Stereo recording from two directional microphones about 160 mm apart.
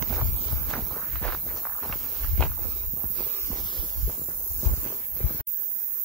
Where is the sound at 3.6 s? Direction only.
30° left (ahead or behind).